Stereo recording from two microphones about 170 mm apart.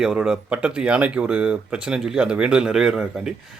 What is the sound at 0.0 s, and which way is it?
Speech, 5° right (ahead or behind).